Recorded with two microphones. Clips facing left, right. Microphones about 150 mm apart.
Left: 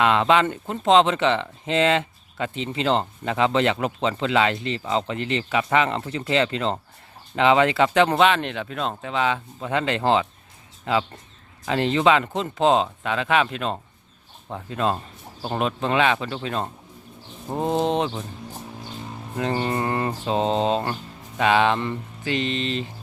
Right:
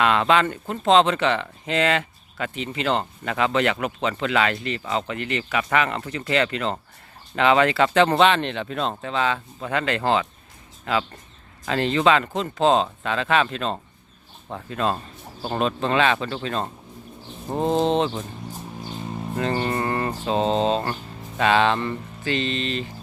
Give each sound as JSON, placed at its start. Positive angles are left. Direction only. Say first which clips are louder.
{"t": 0.0, "sound": "speech", "louder": "left 1 dB", "side_deg": 20}
{"t": 19.4, "sound": "speech", "louder": "even", "side_deg": 15}